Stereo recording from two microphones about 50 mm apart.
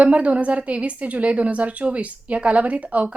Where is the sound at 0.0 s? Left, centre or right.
Right.